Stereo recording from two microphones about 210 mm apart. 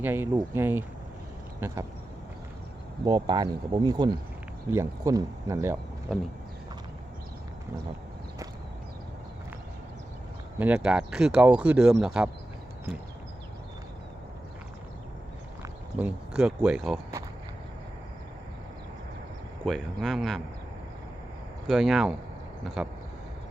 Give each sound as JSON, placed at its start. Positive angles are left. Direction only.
{"t": 0.0, "sound": "speech", "side_deg": -10}
{"t": 3.0, "sound": "speech", "side_deg": -20}
{"t": 10.6, "sound": "speech", "side_deg": -5}
{"t": 15.6, "sound": "speech", "side_deg": -5}
{"t": 19.6, "sound": "speech", "side_deg": 0}
{"t": 21.7, "sound": "speech", "side_deg": 0}